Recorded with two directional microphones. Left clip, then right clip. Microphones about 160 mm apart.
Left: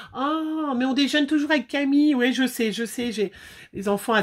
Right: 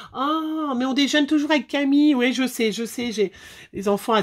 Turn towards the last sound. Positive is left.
turn(degrees=-30)  # may be behind; listen again after turning